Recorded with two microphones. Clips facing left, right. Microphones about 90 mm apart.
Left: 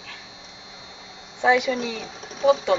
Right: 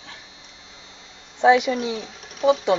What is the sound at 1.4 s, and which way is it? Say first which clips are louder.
Speech: right 3 dB; 20° right (ahead or behind).